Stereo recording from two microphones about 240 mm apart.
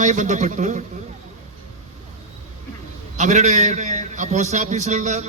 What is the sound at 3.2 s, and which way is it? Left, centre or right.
A man's voice, right.